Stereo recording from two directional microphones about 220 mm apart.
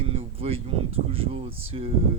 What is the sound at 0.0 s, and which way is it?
Speech, 25° right (ahead or behind).